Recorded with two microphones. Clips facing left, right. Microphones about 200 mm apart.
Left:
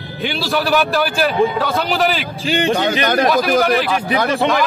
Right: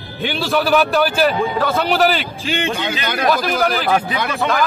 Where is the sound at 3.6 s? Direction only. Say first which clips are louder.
Left 3 dB; centre (ahead or behind).